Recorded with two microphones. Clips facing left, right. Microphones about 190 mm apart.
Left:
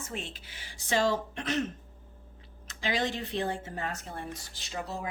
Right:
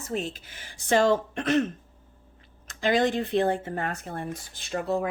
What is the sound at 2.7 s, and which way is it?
Speech, 50° right (ahead or behind).